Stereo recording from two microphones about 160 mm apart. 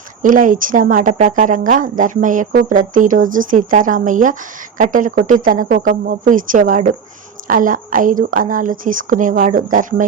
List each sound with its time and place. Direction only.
0.2 s speech: 55° right (ahead or behind)